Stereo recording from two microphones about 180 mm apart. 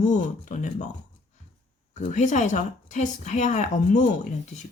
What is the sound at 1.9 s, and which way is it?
Speech, 40° left (ahead or behind).